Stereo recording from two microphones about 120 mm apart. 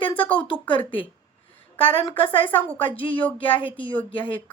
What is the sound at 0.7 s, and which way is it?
Speech, 45° left (ahead or behind).